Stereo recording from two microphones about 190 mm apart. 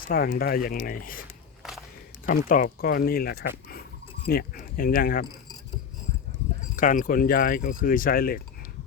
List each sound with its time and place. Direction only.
0.0 s speech: 50° left (ahead or behind)
2.2 s speech: 45° left (ahead or behind)
6.7 s speech: 45° left (ahead or behind)